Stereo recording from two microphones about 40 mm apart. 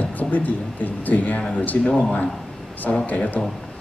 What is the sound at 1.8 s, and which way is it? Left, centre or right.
Speech, centre.